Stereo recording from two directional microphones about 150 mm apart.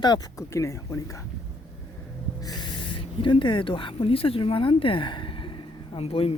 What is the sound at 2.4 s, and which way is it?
Speech, 25° left (ahead or behind).